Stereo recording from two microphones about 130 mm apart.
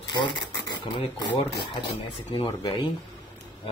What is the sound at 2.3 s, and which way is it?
Speech, 40° left (ahead or behind).